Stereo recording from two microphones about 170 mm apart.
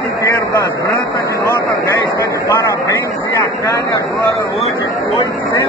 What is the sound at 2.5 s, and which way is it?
Vehicle, 20° left (ahead or behind).